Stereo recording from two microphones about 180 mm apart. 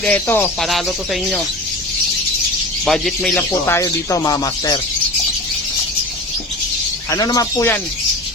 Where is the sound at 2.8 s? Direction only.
Centre (ahead or behind); by 4.8 s 20° left (ahead or behind).